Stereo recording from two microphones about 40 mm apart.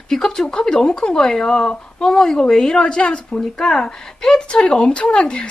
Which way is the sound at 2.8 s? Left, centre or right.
Left.